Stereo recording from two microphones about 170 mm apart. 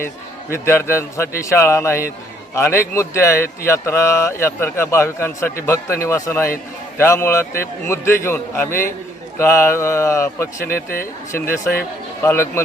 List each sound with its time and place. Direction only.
0.5 s a man's voice: 15° left (ahead or behind)
10.7 s speech: 60° left (ahead or behind)
11.3 s a man's voice: 15° left (ahead or behind)